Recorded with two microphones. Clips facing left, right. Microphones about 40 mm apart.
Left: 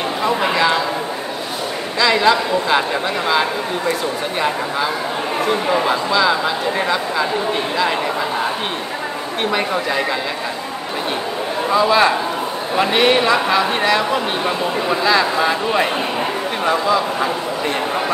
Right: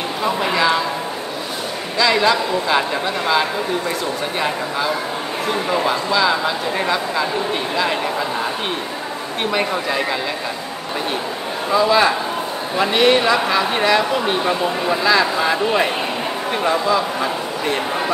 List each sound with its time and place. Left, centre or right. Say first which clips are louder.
0.2 s speech: left 1 dB; centre
2.0 s speech: left 1 dB; centre
5.7 s speech: left 2 dB; centre
9.5 s speech: even; centre
11.7 s speech: left 1 dB; centre